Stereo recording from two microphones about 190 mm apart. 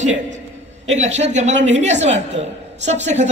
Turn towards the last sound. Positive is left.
turn(degrees=-40)  # may be behind; listen again after turning